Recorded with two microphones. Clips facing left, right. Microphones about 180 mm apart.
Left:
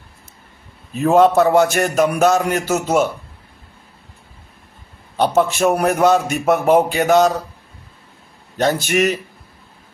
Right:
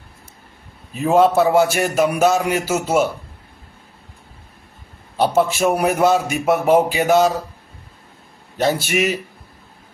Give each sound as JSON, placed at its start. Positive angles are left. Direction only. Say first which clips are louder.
{"t": 0.9, "sound": "a man's voice", "louder": "left 2 dB", "side_deg": -5}
{"t": 5.1, "sound": "a man's voice", "louder": "left 1 dB", "side_deg": -5}
{"t": 8.5, "sound": "a man's voice", "louder": "left 2 dB", "side_deg": -5}